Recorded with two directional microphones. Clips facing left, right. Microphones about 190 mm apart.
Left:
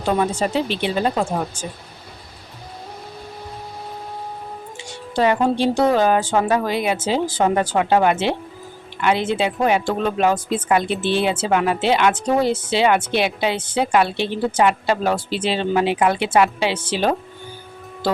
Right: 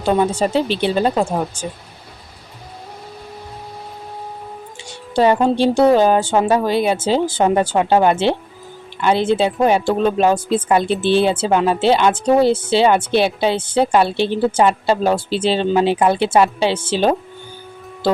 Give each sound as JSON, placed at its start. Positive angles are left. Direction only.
{"t": 0.2, "sound": "speech", "side_deg": -30}
{"t": 5.1, "sound": "speech", "side_deg": -30}